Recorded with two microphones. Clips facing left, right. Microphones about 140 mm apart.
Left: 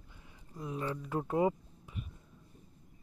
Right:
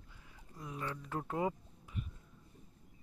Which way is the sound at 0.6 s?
25° left (ahead or behind).